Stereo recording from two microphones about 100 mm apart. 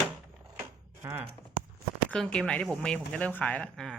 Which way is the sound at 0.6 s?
20° right (ahead or behind).